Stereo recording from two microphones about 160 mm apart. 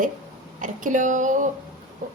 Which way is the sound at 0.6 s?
55° right (ahead or behind).